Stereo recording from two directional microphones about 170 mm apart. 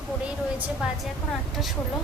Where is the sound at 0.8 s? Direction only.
5° right (ahead or behind).